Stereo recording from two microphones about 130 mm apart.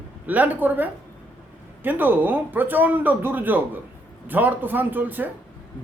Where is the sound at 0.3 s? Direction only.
15° right (ahead or behind).